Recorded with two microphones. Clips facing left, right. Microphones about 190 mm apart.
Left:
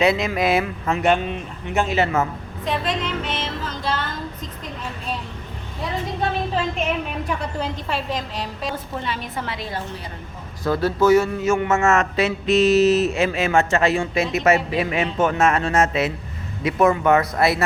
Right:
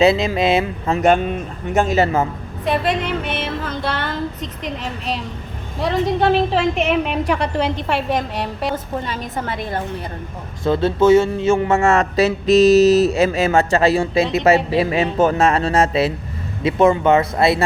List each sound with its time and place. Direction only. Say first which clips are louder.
0.0 s speech: right 4 dB; 30° right (ahead or behind)
0.9 s a woman's voice: right 5 dB; 45° right (ahead or behind)
2.6 s female singing: right 5 dB; 60° right (ahead or behind)
4.6 s a woman's voice: right 6 dB; 80° right; by 8.7 s 65° right (ahead or behind)
8.7 s a woman's voice: right 4 dB; 45° right (ahead or behind)
10.6 s a man's voice: right 3 dB; 25° right (ahead or behind)